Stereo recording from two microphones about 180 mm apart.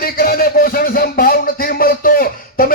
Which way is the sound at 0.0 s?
55° left (ahead or behind).